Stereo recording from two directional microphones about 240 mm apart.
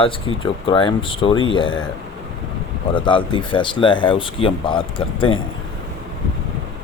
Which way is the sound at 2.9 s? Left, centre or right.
Centre.